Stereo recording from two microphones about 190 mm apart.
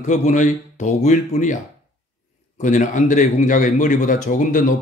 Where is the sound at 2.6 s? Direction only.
40° left (ahead or behind).